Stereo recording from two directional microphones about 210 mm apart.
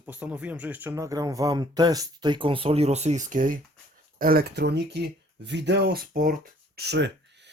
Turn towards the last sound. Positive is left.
turn(degrees=-55)  # may be behind; listen again after turning